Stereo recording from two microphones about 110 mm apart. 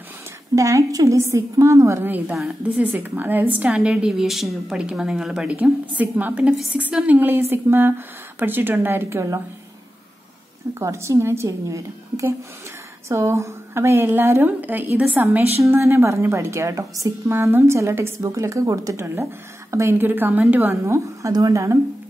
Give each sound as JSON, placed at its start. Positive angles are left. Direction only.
{"t": 0.6, "sound": "a woman's voice", "side_deg": -30}
{"t": 10.7, "sound": "a woman's voice", "side_deg": -25}